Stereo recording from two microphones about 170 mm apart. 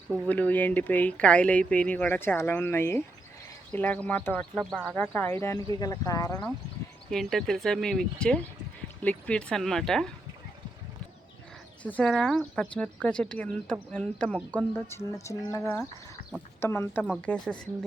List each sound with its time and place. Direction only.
0.3 s speech: 10° left (ahead or behind)
4.8 s speech: 10° right (ahead or behind)
5.1 s speech: 10° left (ahead or behind)
7.1 s speech: centre (ahead or behind)
11.8 s speech: 10° left (ahead or behind)